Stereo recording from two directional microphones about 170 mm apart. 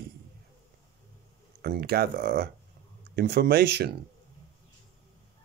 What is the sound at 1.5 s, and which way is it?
Speech, 65° right (ahead or behind).